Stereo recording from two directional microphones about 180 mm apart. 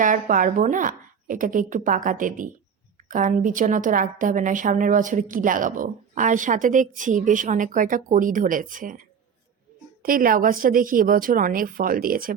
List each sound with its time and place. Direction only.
0.0 s a woman's voice: 45° right (ahead or behind)